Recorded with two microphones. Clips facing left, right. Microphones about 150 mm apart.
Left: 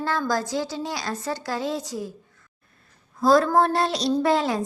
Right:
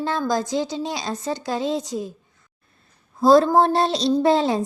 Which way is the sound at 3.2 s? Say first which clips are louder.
Right 4 dB; 25° right (ahead or behind).